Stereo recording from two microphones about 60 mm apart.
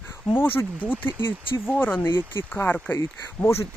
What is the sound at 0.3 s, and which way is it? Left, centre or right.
Speech, left.